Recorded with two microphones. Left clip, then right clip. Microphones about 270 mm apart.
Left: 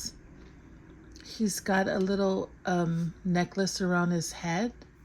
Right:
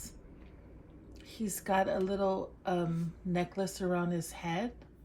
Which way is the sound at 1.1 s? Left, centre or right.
Left.